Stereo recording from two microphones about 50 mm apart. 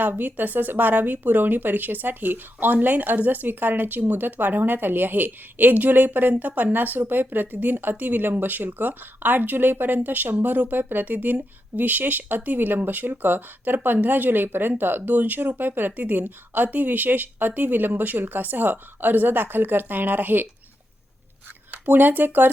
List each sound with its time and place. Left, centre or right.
0.0 s speech: right
21.7 s speech: right